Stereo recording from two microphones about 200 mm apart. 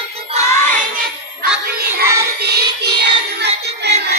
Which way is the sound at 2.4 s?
55° right (ahead or behind).